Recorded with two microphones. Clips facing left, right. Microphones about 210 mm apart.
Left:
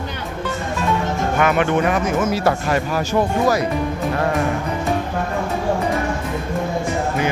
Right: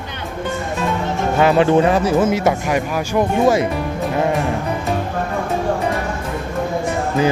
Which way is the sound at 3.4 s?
25° right (ahead or behind).